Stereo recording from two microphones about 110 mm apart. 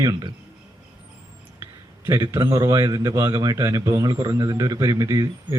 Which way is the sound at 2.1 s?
40° right (ahead or behind).